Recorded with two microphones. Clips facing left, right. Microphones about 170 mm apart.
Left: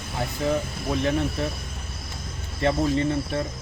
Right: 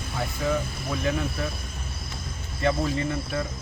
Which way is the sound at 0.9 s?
30° left (ahead or behind).